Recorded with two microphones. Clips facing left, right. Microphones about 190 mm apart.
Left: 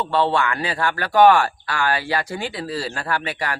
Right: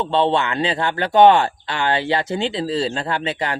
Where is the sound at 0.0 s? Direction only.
20° right (ahead or behind).